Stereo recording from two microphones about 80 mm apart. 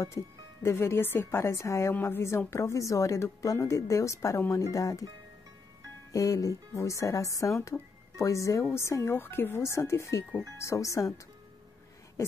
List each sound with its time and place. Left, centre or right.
0.0 s a woman's voice: left
6.1 s a woman's voice: left